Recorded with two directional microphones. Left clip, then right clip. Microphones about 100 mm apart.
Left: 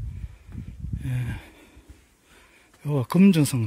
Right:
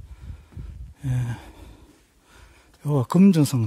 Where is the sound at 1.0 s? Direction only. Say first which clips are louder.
Right 3 dB; 30° right (ahead or behind).